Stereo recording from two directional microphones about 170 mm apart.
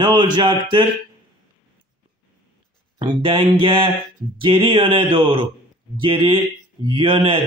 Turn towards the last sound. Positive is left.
turn(degrees=-30)  # may be behind; listen again after turning